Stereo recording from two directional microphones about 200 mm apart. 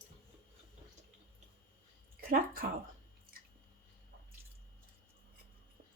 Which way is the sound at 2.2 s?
45° right (ahead or behind).